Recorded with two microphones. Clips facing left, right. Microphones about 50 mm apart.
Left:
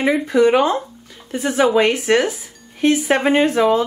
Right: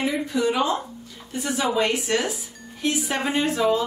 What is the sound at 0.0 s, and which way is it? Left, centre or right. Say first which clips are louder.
Speech: left 8 dB; left.